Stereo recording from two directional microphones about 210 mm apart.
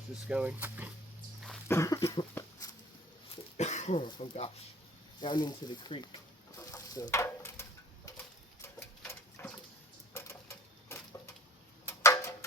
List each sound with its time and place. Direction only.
0.3 s speech: 5° right (ahead or behind)
1.6 s a sound: 15° left (ahead or behind)
3.3 s dog: 35° left (ahead or behind)
5.2 s speech: 20° left (ahead or behind)
6.6 s stir: 15° left (ahead or behind)
8.6 s a sound: 10° left (ahead or behind)